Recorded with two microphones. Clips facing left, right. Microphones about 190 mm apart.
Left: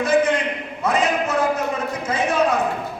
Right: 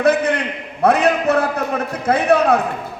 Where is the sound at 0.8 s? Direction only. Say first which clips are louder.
Right 6 dB; 60° right (ahead or behind).